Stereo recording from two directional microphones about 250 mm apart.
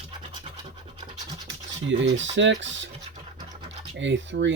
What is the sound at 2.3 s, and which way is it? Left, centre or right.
Speech, right.